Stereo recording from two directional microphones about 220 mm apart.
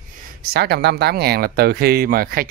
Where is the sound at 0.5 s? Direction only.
45° right (ahead or behind).